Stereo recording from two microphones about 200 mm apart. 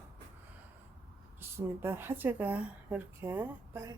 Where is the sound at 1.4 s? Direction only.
10° right (ahead or behind).